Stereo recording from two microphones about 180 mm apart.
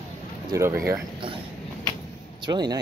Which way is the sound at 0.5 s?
15° right (ahead or behind).